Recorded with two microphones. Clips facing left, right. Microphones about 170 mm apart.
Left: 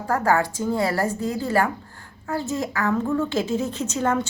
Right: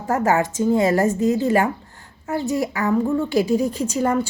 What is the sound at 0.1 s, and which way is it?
A woman's voice, 20° right (ahead or behind).